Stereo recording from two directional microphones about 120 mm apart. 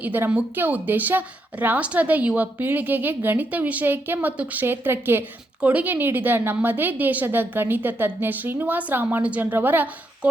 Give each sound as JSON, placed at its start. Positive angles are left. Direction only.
{"t": 0.0, "sound": "a woman's voice", "side_deg": -15}